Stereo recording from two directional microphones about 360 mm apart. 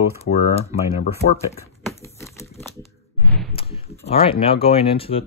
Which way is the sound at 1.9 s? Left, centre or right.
Centre.